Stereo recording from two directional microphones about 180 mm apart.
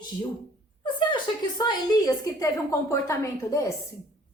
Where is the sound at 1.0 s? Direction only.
25° left (ahead or behind).